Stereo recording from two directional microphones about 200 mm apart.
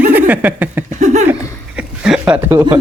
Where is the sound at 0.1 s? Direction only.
10° right (ahead or behind).